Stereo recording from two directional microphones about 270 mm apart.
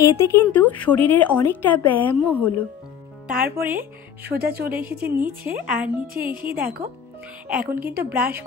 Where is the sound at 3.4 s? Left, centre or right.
Centre.